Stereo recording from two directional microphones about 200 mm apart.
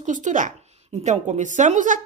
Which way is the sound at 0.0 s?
40° right (ahead or behind).